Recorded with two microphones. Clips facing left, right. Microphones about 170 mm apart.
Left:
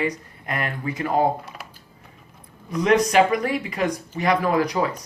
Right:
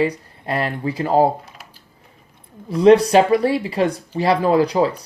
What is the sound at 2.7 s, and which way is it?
Speech, 30° right (ahead or behind).